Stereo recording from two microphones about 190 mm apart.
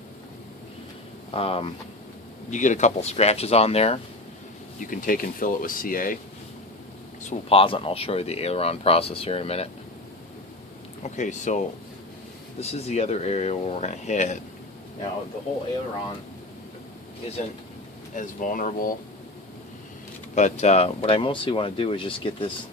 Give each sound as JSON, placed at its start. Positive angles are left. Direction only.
{"t": 1.3, "sound": "speech", "side_deg": 30}
{"t": 4.9, "sound": "speech", "side_deg": 45}
{"t": 7.2, "sound": "speech", "side_deg": 35}
{"t": 11.0, "sound": "speech", "side_deg": 40}
{"t": 18.1, "sound": "speech", "side_deg": 45}
{"t": 20.3, "sound": "speech", "side_deg": 40}